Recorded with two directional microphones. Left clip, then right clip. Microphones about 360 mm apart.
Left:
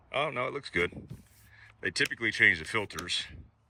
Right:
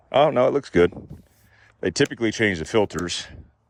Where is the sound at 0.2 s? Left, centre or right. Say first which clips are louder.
Right 14 dB; centre.